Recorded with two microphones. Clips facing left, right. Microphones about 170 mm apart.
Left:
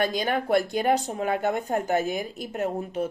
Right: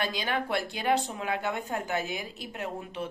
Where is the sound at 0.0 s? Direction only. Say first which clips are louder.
Left 6 dB; 45° left (ahead or behind).